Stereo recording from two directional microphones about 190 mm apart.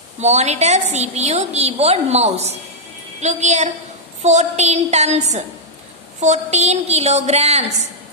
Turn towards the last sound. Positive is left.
turn(degrees=-35)  # may be behind; listen again after turning